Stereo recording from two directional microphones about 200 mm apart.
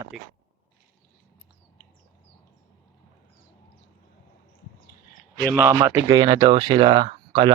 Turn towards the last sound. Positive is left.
turn(degrees=-25)  # may be behind; listen again after turning